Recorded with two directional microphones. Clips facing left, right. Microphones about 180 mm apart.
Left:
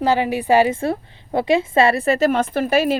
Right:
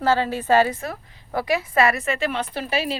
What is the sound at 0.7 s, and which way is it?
A woman's voice, 30° left (ahead or behind).